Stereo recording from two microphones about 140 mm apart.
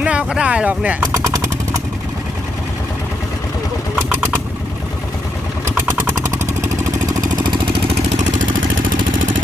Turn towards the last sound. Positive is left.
turn(degrees=-40)  # may be behind; listen again after turning